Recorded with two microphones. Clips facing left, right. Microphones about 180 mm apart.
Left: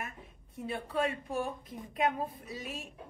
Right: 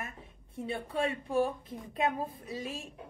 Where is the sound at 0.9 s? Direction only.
25° right (ahead or behind).